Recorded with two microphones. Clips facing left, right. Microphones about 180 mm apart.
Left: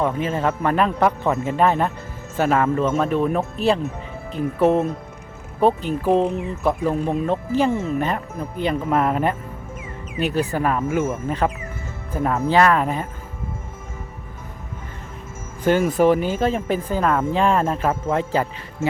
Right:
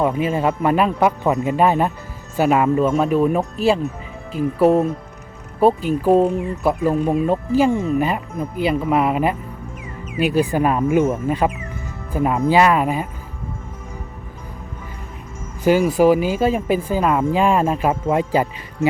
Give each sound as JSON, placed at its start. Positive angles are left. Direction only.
{"t": 0.0, "sound": "speech", "side_deg": -10}
{"t": 7.7, "sound": "speech", "side_deg": 5}
{"t": 7.9, "sound": "speech", "side_deg": -10}
{"t": 15.8, "sound": "speech", "side_deg": 0}